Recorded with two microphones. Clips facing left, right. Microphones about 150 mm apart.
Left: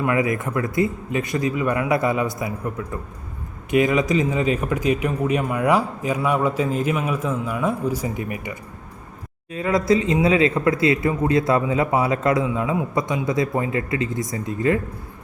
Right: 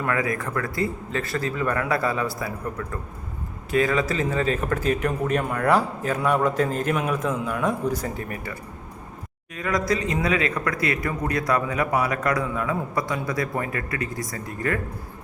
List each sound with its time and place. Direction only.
0.0 s speech: 20° left (ahead or behind)
9.6 s a man's voice: 25° left (ahead or behind)